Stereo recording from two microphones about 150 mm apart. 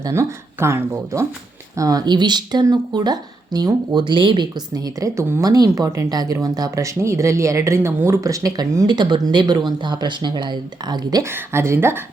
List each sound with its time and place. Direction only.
0.0 s speech: 20° right (ahead or behind)